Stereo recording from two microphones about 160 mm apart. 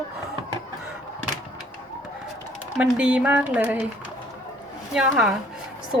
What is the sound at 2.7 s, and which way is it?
Speech, 5° right (ahead or behind).